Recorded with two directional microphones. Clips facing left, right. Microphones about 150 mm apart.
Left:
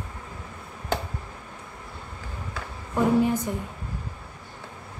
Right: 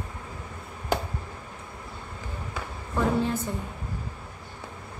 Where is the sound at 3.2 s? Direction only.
15° left (ahead or behind).